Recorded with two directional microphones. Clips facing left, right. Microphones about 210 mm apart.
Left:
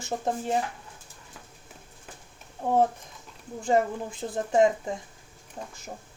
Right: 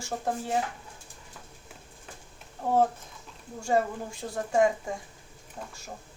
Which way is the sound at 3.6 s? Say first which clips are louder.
Left 2 dB; 20° left (ahead or behind).